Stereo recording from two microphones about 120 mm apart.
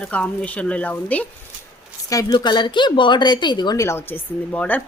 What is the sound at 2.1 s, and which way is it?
A woman's voice, 35° left (ahead or behind).